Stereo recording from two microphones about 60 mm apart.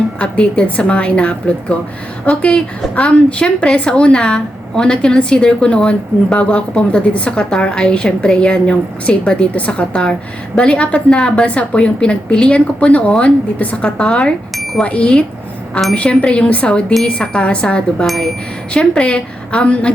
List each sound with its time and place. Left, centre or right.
0.2 s a woman's voice: centre
14.5 s a sound: centre
14.8 s a woman's voice: centre
18.0 s speech: centre
18.7 s a woman's voice: centre